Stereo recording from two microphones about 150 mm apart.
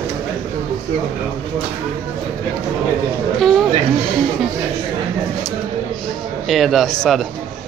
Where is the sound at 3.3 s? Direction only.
Centre (ahead or behind).